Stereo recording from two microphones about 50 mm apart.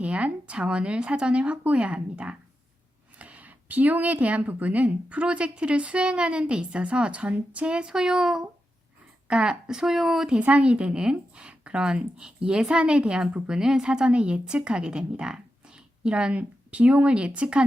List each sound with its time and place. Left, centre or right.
0.0 s a woman's voice: right; by 10.3 s centre
10.4 s a woman's voice: right